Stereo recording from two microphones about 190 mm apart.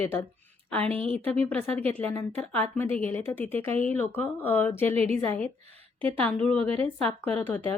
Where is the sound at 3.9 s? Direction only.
10° left (ahead or behind).